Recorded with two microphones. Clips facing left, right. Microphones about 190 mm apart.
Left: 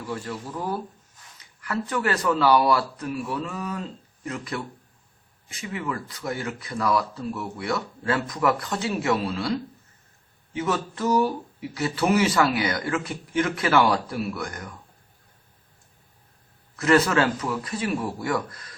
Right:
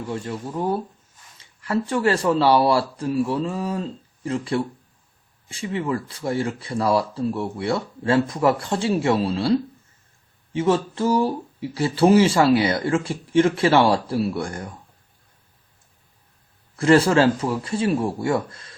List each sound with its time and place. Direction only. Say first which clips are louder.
0.1 s speech: right 2 dB; 25° right (ahead or behind)
16.7 s speech: right 4 dB; 30° right (ahead or behind)